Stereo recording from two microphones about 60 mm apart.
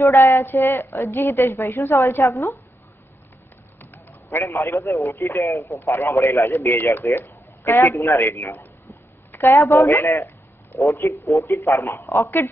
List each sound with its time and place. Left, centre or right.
0.0 s a woman's voice: left
0.5 s a woman's voice: left
3.9 s a sound: left
4.5 s speech: left
5.2 s speech: left
5.5 s speech: left
5.8 s speech: left
7.2 s a sound: left
7.9 s speech: left
8.2 s a woman's voice: left
10.8 s speech: left